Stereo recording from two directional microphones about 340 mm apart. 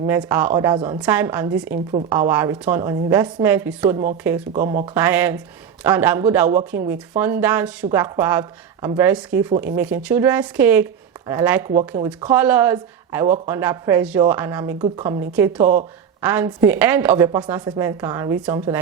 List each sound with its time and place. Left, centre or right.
0.0 s speech: centre
4.5 s speech: right
4.9 s a man's voice: centre